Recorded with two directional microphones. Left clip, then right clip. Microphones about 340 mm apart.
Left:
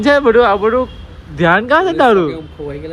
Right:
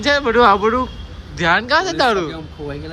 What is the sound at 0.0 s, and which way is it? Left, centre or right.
Speech, centre.